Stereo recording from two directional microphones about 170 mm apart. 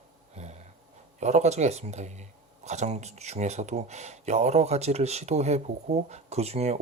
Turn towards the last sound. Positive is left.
turn(degrees=-40)  # may be behind; listen again after turning